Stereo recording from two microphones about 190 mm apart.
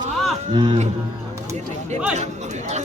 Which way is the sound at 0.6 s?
25° right (ahead or behind).